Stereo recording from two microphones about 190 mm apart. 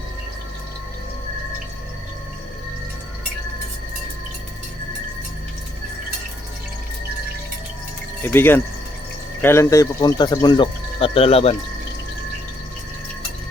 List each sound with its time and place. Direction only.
8.2 s speech: 10° left (ahead or behind); by 11.5 s 30° left (ahead or behind)